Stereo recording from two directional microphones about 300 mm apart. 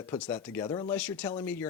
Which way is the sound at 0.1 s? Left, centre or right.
Centre.